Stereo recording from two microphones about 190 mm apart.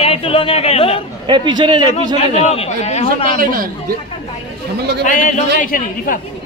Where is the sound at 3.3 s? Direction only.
45° right (ahead or behind).